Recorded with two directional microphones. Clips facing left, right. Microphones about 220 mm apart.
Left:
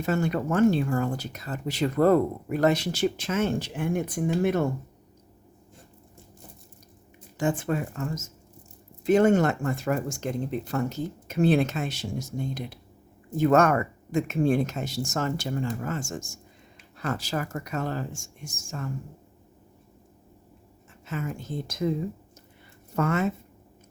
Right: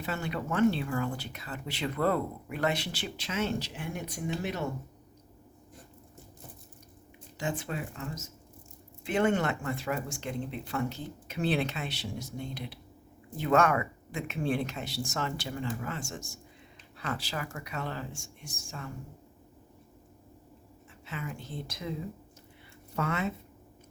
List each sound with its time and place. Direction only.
0.0 s speech: 45° left (ahead or behind)
7.3 s speech: 50° left (ahead or behind)
21.1 s speech: 45° left (ahead or behind)
23.0 s speech: 50° left (ahead or behind)